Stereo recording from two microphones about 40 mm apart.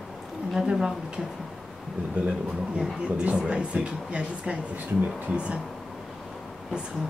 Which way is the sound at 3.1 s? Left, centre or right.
Right.